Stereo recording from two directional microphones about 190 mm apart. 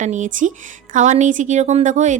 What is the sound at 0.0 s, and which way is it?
A woman's voice, 40° right (ahead or behind).